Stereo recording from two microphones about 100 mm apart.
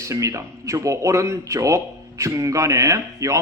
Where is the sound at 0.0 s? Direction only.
30° right (ahead or behind).